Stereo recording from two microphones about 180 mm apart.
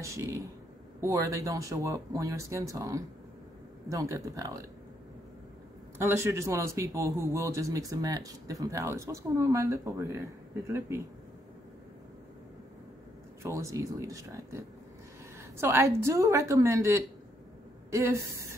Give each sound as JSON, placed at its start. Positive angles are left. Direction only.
{"t": 0.0, "sound": "a man's voice", "side_deg": -15}
{"t": 5.9, "sound": "a man's voice", "side_deg": -15}
{"t": 13.4, "sound": "a man's voice", "side_deg": -15}